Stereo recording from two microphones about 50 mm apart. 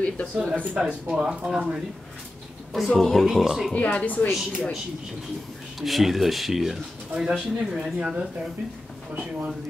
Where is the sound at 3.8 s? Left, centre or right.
Left.